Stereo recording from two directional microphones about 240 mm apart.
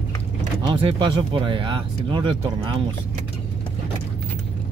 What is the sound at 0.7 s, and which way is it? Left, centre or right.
Speech, right.